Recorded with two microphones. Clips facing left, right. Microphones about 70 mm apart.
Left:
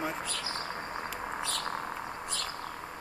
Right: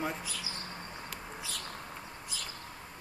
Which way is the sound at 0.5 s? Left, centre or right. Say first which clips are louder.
Left 7 dB; left.